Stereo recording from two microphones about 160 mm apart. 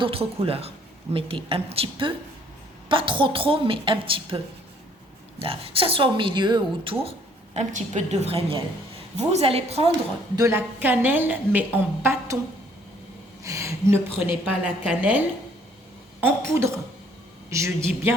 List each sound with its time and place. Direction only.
0.0 s a woman's voice: 35° right (ahead or behind)
5.4 s a woman's voice: 35° right (ahead or behind)
7.5 s a woman's voice: 50° right (ahead or behind)
10.3 s a woman's voice: 15° right (ahead or behind)
13.4 s a woman's voice: 20° right (ahead or behind)
17.5 s a woman's voice: 15° right (ahead or behind)